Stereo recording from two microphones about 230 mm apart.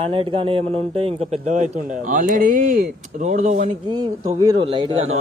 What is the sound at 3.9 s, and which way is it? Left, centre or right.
Speech, right.